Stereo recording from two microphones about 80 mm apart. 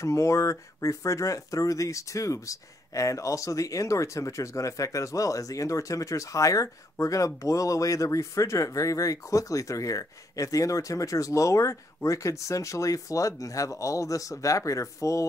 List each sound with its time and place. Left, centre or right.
0.0 s speech: left